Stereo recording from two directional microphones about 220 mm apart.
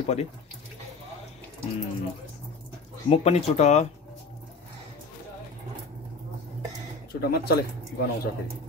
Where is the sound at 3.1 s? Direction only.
30° left (ahead or behind).